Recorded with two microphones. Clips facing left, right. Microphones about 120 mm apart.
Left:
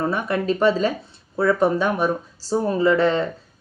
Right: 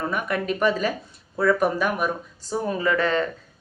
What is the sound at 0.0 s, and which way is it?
Speech, 30° left (ahead or behind).